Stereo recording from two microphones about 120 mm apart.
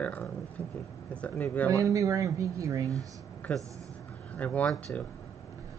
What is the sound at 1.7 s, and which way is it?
Speech, 30° right (ahead or behind).